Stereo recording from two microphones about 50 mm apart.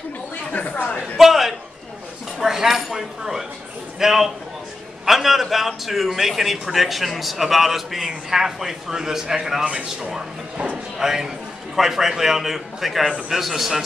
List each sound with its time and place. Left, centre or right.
0.5 s a woman's voice: left
1.1 s a sound: centre
2.3 s dishes: centre
4.0 s a man's voice: centre